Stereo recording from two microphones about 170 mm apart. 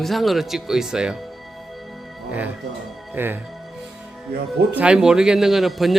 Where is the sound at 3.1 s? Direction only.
10° right (ahead or behind).